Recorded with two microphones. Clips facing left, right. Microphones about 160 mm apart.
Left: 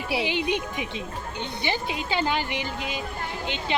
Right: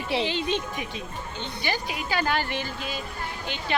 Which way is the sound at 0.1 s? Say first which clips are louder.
Even; 10° left (ahead or behind).